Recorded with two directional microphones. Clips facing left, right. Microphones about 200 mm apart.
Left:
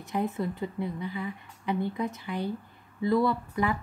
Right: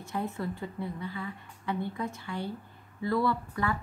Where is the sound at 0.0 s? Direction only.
15° left (ahead or behind).